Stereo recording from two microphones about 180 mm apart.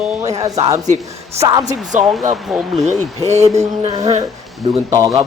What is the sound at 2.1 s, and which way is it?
Speech, centre (ahead or behind).